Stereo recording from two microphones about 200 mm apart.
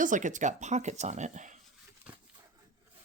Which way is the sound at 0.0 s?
40° right (ahead or behind).